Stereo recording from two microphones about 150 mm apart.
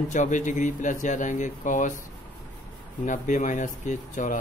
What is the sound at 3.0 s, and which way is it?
Speech, 60° left (ahead or behind).